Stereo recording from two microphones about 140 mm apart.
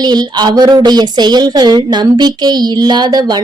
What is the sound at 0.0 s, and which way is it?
A woman's voice, 30° right (ahead or behind).